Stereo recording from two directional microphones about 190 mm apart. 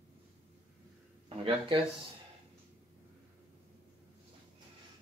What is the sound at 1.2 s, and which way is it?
Speech, 30° right (ahead or behind).